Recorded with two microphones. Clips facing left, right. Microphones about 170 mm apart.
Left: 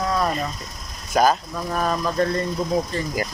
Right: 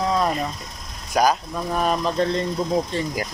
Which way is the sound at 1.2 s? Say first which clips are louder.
Even; 20° right (ahead or behind).